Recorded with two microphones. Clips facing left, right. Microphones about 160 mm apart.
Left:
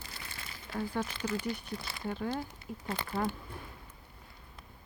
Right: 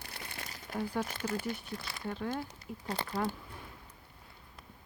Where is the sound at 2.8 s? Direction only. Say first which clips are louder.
Right 1 dB; 35° right (ahead or behind).